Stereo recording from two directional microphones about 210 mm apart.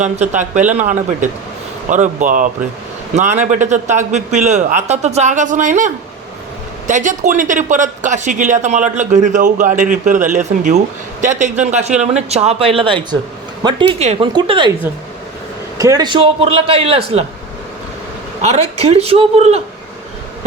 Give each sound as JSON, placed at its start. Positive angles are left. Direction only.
{"t": 0.0, "sound": "a man's voice", "side_deg": -35}
{"t": 15.8, "sound": "a man's voice", "side_deg": -20}
{"t": 18.4, "sound": "a man's voice", "side_deg": -30}